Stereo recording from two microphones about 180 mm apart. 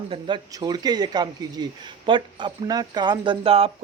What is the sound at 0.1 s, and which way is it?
Speech, 25° right (ahead or behind).